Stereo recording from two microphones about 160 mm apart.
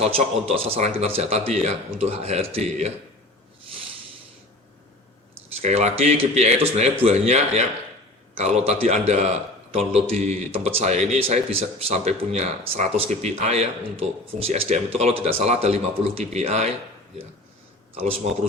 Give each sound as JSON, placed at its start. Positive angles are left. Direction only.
{"t": 0.0, "sound": "a man's voice", "side_deg": -40}
{"t": 5.6, "sound": "a man's voice", "side_deg": -40}
{"t": 17.9, "sound": "speech", "side_deg": -35}